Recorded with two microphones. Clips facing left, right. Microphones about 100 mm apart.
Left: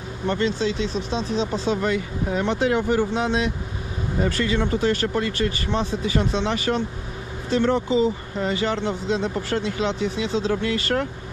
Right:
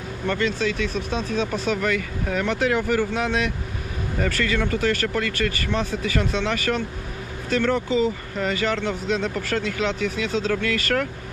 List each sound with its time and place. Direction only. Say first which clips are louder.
0.3 s speech: left 1 dB; 25° left (ahead or behind)